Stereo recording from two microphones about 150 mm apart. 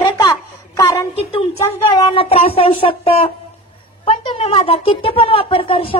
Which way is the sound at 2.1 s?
40° left (ahead or behind).